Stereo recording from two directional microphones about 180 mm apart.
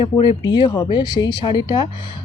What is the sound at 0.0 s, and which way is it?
Speech, 25° left (ahead or behind).